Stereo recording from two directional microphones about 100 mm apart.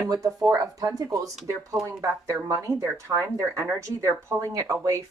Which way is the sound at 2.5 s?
30° right (ahead or behind).